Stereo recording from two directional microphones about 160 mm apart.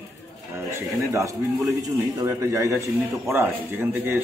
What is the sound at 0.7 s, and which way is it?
A man's voice, 20° right (ahead or behind).